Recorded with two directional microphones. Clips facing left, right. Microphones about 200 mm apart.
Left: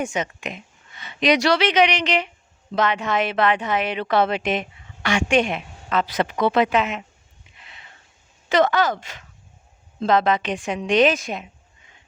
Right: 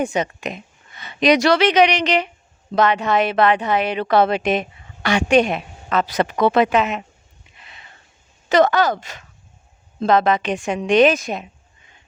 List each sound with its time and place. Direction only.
0.0 s speech: 35° right (ahead or behind)
8.4 s a woman's voice: 40° right (ahead or behind)